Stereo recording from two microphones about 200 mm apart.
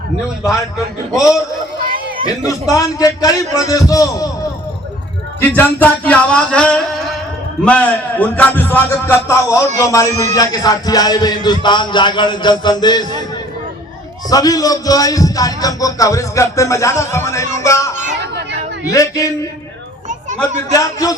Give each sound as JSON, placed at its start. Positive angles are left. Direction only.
{"t": 1.2, "sound": "a man's voice", "side_deg": 15}
{"t": 5.4, "sound": "a sound", "side_deg": 10}
{"t": 7.6, "sound": "a man's voice", "side_deg": 5}
{"t": 10.3, "sound": "music", "side_deg": 20}
{"t": 14.3, "sound": "a man's voice", "side_deg": 20}
{"t": 20.1, "sound": "children playing", "side_deg": -35}
{"t": 20.7, "sound": "a man's voice", "side_deg": 15}